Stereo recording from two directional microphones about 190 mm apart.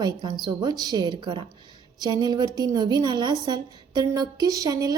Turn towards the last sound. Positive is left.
turn(degrees=-20)  # may be behind; listen again after turning